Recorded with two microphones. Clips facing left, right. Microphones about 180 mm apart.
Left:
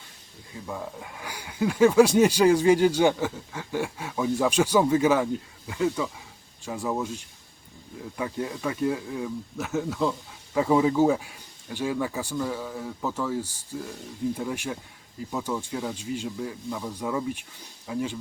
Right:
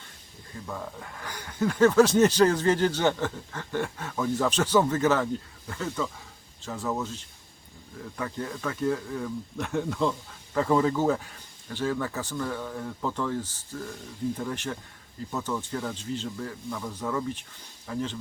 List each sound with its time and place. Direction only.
0.7 s speech: 10° left (ahead or behind)